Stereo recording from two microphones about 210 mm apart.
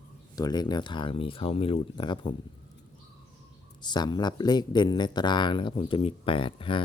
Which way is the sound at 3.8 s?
20° left (ahead or behind).